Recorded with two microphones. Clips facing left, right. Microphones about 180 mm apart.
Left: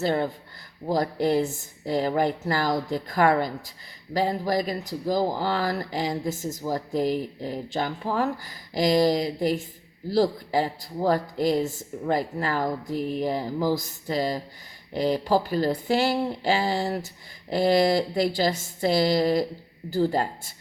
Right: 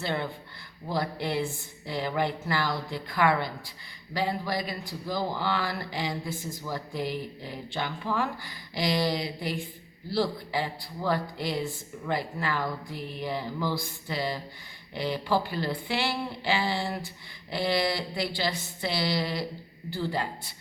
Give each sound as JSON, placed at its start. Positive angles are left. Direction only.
{"t": 0.0, "sound": "a man's voice", "side_deg": 40}